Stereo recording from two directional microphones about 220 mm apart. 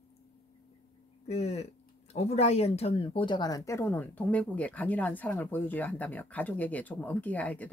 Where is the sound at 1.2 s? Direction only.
30° left (ahead or behind).